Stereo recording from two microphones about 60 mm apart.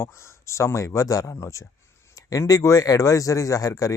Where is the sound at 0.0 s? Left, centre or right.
Left.